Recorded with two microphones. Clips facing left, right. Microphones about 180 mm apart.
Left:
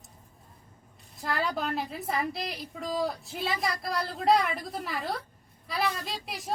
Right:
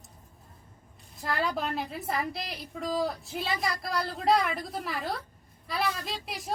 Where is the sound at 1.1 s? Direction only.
Centre (ahead or behind).